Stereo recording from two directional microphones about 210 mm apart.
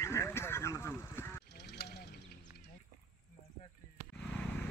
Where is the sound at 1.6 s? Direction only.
50° left (ahead or behind).